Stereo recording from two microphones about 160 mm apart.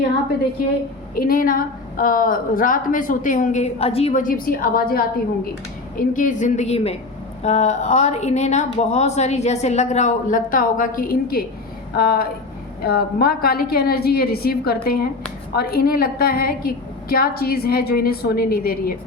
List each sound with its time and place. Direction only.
1.1 s a woman's voice: 65° left (ahead or behind); by 4.2 s 40° left (ahead or behind)
4.2 s a woman's voice: 60° left (ahead or behind)
6.0 s a woman's voice: 55° left (ahead or behind); by 18.9 s 70° left (ahead or behind)